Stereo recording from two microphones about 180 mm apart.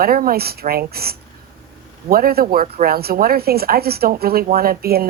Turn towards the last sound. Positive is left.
turn(degrees=-55)  # may be behind; listen again after turning